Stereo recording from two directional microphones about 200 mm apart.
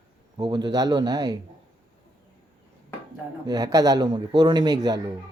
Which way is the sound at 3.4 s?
20° right (ahead or behind).